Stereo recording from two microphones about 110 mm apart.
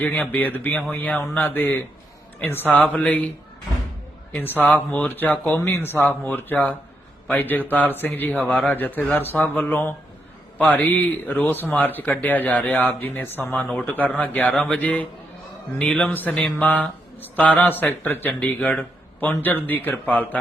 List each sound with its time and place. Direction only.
0.0 s speech: 15° left (ahead or behind)
4.4 s speech: 15° left (ahead or behind)
13.6 s speech: centre (ahead or behind)
14.2 s speech: 15° left (ahead or behind)